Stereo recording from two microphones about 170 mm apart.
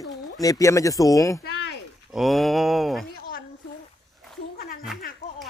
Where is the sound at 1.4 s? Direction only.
70° left (ahead or behind).